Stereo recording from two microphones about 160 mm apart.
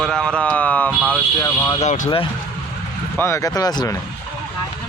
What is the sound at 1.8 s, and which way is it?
Speech, 50° left (ahead or behind).